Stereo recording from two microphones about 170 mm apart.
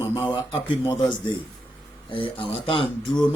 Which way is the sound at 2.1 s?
30° left (ahead or behind).